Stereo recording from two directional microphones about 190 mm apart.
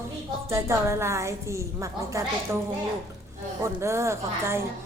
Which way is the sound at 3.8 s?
15° right (ahead or behind).